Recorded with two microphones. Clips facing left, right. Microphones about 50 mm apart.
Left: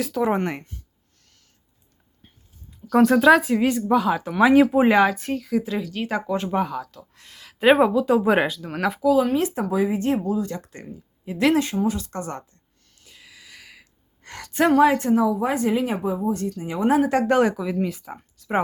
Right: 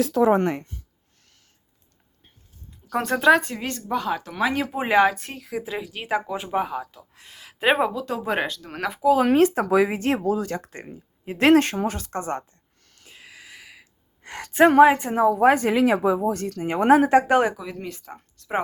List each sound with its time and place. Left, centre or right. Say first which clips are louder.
2.2 s speech: even; centre
9.2 s speech: right 4 dB; right
9.6 s speech: right 2 dB; right
10.7 s speech: even; right
12.2 s a woman's voice: right 3 dB; right
13.1 s a sound: right 3 dB; right
13.5 s gasp: right 1 dB; centre
14.7 s a woman's voice: right 1 dB; right
15.1 s a woman's voice: even; right
15.4 s speech: right 5 dB; right
15.7 s speech: right 4 dB; right
16.6 s speech: right 3 dB; right
17.1 s speech: right 1 dB; centre
17.6 s speech: left 8 dB; centre